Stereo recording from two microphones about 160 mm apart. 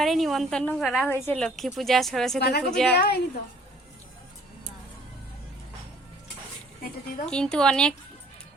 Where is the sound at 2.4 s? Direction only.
85° left.